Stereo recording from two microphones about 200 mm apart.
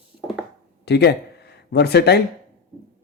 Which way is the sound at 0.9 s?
55° left (ahead or behind).